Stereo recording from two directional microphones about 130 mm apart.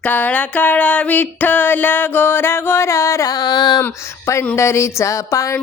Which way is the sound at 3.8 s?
20° left (ahead or behind).